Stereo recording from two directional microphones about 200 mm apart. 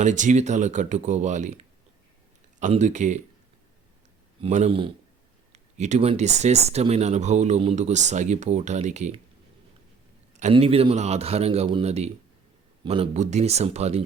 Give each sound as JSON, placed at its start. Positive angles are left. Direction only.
{"t": 0.0, "sound": "speech", "side_deg": -40}
{"t": 4.4, "sound": "speech", "side_deg": -35}
{"t": 10.3, "sound": "speech", "side_deg": -35}